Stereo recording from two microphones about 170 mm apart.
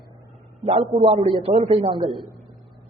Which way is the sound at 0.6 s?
40° right (ahead or behind).